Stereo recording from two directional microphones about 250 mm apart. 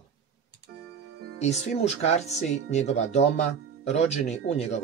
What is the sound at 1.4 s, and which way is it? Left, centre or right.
Speech, left.